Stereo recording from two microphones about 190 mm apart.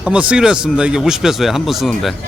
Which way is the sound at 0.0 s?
5° right (ahead or behind).